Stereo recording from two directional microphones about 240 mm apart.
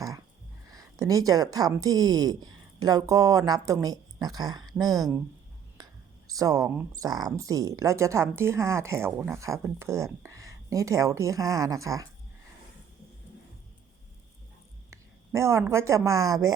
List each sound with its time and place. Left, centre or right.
0.7 s a woman's voice: centre
5.8 s a sound: centre
6.2 s speech: centre
14.8 s speech: centre